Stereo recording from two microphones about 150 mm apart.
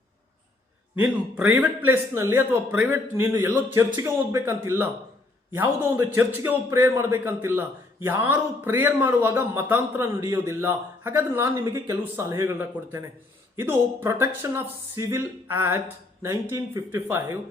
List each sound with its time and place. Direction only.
0.9 s speech: 10° right (ahead or behind)